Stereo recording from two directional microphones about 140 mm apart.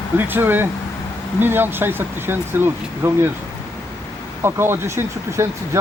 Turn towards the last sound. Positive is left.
turn(degrees=-20)  # may be behind; listen again after turning